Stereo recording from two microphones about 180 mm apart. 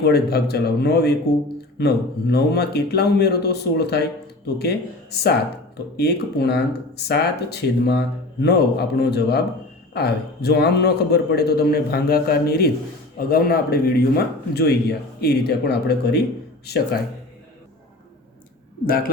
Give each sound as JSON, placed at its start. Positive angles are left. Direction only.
{"t": 0.0, "sound": "speech", "side_deg": 60}
{"t": 6.0, "sound": "speech", "side_deg": 65}